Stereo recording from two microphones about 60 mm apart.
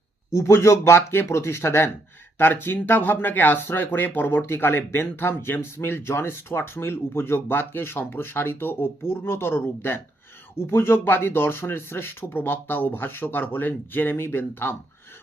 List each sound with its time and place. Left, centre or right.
0.3 s speech: left